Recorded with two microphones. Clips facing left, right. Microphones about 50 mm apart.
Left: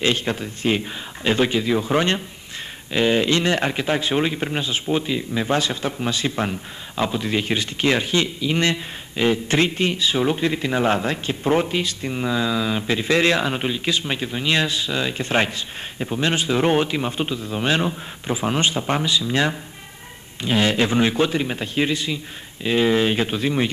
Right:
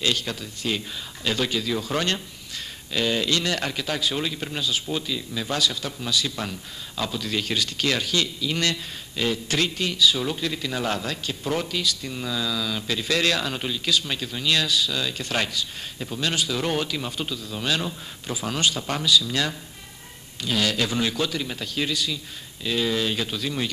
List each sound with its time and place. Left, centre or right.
0.0 s a man's voice: left